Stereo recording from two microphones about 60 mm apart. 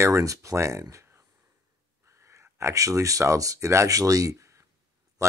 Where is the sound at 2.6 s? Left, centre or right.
Right.